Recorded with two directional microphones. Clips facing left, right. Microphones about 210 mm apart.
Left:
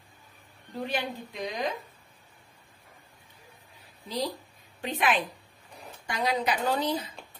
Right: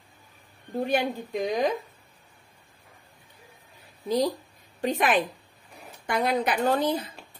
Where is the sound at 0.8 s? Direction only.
45° right (ahead or behind).